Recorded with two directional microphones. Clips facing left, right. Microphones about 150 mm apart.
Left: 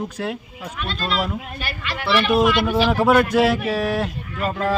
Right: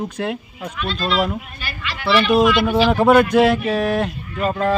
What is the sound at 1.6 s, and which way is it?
Speech, 50° left (ahead or behind).